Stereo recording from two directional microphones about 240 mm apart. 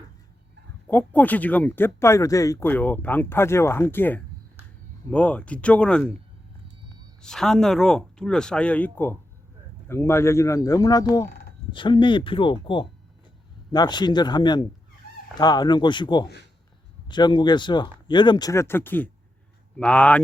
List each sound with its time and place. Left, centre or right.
0.9 s speech: centre
7.2 s speech: centre